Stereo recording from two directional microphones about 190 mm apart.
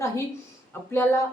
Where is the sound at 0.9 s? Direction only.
10° left (ahead or behind).